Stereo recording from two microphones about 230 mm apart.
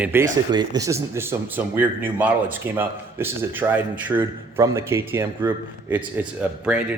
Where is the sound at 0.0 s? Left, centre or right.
Centre.